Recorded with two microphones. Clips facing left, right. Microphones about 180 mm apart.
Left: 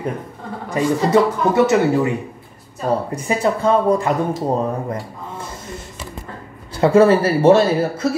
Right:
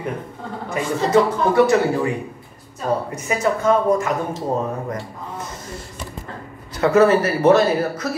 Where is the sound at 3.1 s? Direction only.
30° left (ahead or behind).